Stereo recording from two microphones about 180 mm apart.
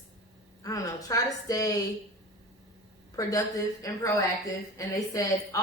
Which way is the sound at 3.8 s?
20° left (ahead or behind).